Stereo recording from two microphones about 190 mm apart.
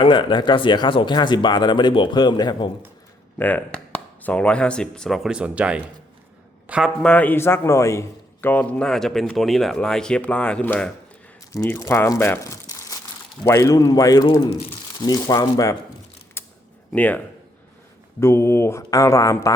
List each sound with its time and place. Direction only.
0.0 s speech: 25° left (ahead or behind)
3.3 s a man's voice: 10° left (ahead or behind)
7.0 s a man's voice: 5° left (ahead or behind)
16.4 s a sound: 15° left (ahead or behind)
16.9 s speech: 10° left (ahead or behind)
18.2 s speech: 15° left (ahead or behind)